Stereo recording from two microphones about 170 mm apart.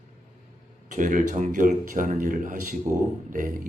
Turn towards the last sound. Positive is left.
turn(degrees=-50)  # may be behind; listen again after turning